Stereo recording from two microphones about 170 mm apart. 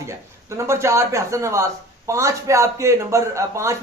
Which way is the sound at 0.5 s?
15° right (ahead or behind).